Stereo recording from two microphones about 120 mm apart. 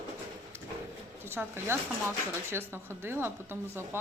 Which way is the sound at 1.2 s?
20° right (ahead or behind).